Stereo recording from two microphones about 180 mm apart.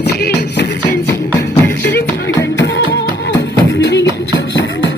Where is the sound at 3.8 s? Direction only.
75° left (ahead or behind).